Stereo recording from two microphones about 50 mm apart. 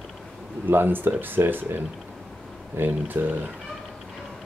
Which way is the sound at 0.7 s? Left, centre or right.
Right.